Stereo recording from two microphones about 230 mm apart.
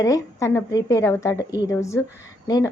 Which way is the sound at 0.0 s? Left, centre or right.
Centre.